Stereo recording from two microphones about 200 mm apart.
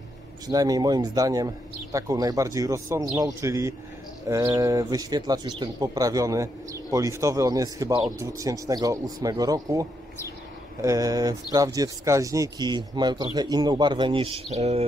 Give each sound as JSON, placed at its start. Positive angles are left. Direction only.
{"t": 0.5, "sound": "speech", "side_deg": -20}